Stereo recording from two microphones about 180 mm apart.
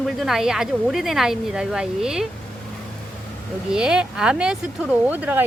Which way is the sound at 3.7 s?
5° right (ahead or behind).